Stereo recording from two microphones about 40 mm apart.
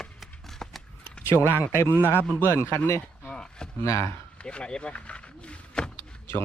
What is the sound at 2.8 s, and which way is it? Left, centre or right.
Speech, left.